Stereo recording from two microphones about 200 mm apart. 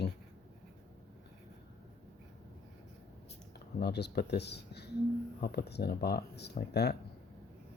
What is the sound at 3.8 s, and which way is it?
Speech, 55° left (ahead or behind).